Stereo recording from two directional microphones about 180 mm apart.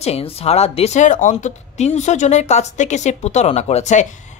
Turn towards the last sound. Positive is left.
turn(degrees=40)  # may be behind; listen again after turning